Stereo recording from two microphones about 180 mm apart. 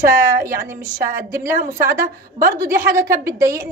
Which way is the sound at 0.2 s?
60° right (ahead or behind).